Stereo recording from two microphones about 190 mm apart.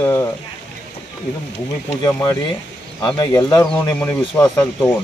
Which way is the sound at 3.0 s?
15° left (ahead or behind).